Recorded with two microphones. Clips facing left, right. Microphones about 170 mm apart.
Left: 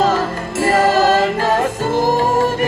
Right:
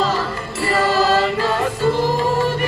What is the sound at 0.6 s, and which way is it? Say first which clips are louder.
Music: left 4 dB; 45° left (ahead or behind).